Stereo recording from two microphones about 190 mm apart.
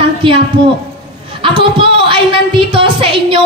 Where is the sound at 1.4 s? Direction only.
25° right (ahead or behind).